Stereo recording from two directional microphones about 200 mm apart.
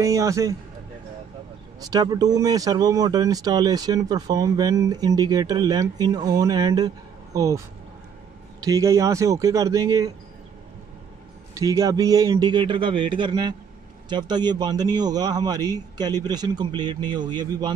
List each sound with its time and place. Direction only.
0.0 s speech: 15° right (ahead or behind)
1.8 s speech: 20° right (ahead or behind)
11.5 s speech: 15° right (ahead or behind)